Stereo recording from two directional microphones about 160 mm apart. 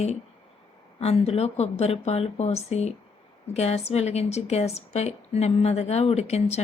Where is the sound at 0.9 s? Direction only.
40° left (ahead or behind).